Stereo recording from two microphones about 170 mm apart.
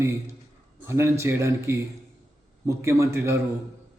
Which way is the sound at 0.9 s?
15° right (ahead or behind).